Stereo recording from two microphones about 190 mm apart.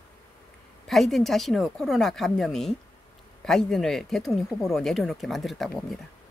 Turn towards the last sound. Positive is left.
turn(degrees=0)  # may be behind; listen again after turning